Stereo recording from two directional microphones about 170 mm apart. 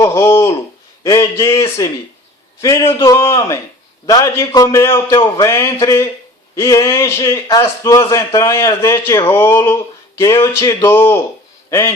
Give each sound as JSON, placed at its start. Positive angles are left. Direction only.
{"t": 0.0, "sound": "a man's voice", "side_deg": 15}